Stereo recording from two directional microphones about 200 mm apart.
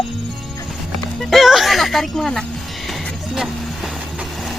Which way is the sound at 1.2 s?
Centre (ahead or behind).